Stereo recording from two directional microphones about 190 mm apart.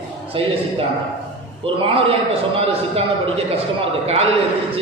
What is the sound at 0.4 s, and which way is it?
Speech, 30° right (ahead or behind).